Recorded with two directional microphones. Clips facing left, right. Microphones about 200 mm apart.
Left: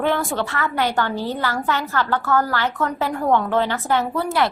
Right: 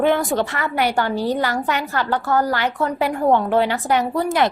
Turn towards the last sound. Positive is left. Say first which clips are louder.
# right 2 dB
turn(degrees=-15)  # may be behind; listen again after turning